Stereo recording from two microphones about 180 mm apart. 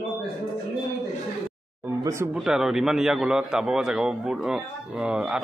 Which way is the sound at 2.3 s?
5° right (ahead or behind).